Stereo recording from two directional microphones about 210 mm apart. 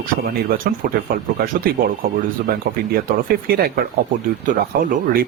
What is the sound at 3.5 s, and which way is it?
Speech, 45° right (ahead or behind).